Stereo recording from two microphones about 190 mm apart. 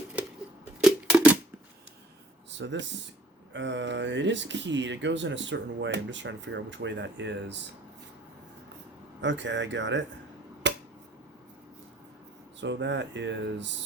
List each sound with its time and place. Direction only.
0.2 s a sound: 5° right (ahead or behind)
2.5 s speech: 70° right (ahead or behind)
9.2 s speech: 70° right (ahead or behind)
10.6 s finger snapping: 65° right (ahead or behind)
12.5 s speech: 70° right (ahead or behind)